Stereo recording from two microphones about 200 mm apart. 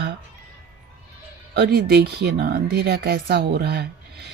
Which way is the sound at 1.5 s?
50° right (ahead or behind).